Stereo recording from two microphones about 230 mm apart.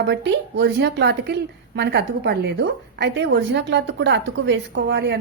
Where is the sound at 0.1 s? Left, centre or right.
Right.